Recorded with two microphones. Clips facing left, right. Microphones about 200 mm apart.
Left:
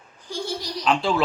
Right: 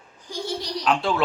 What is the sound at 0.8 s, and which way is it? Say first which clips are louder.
Speech: left 1 dB; centre (ahead or behind).